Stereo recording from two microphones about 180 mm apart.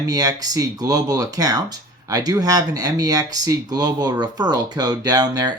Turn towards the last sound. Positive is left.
turn(degrees=-20)  # may be behind; listen again after turning